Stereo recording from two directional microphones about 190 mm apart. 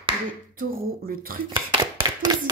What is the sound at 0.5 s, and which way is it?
Speech, 50° right (ahead or behind).